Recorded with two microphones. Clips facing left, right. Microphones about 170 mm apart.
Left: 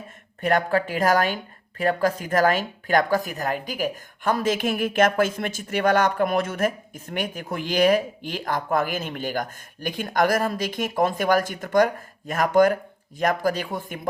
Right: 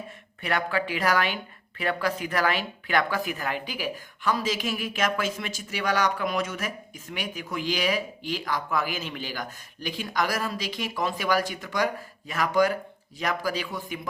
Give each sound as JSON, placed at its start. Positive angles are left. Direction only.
{"t": 0.4, "sound": "speech", "side_deg": 45}